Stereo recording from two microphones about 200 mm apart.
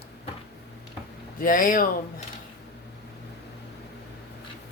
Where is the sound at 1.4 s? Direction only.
45° left (ahead or behind).